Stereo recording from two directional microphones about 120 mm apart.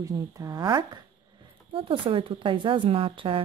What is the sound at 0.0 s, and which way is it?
Speech, 30° right (ahead or behind).